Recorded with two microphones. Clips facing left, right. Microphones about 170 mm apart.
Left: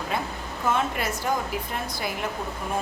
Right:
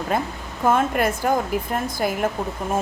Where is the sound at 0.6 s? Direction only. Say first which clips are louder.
Right 7 dB; 50° right (ahead or behind).